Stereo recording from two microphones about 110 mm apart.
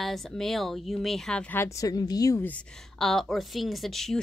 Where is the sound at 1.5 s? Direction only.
30° left (ahead or behind).